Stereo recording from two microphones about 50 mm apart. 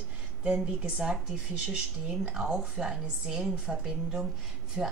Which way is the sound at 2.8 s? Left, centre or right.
Centre.